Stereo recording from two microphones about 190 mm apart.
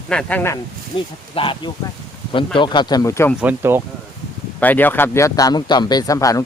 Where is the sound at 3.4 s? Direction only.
10° right (ahead or behind).